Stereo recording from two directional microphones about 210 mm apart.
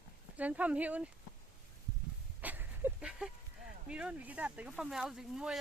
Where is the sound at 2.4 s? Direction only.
10° right (ahead or behind).